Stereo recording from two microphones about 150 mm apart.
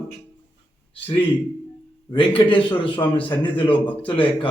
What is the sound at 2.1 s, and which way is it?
A man's voice, 35° left (ahead or behind).